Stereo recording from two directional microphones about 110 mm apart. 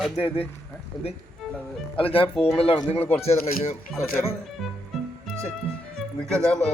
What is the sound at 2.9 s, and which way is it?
Speech, 65° left (ahead or behind).